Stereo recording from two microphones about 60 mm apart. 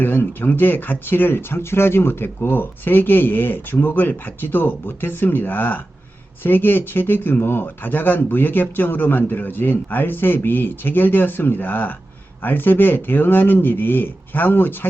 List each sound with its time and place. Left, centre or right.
0.0 s speech: left